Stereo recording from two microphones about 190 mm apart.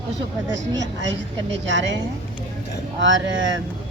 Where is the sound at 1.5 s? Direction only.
70° right (ahead or behind).